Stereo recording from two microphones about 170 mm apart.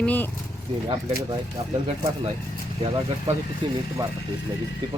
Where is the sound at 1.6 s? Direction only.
35° right (ahead or behind).